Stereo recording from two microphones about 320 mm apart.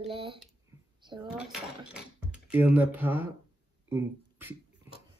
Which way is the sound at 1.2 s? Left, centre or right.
Centre.